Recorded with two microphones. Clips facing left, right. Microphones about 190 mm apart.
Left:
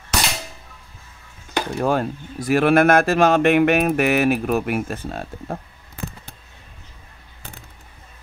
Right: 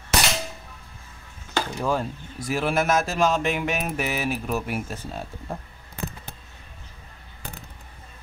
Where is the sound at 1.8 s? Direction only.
65° left (ahead or behind).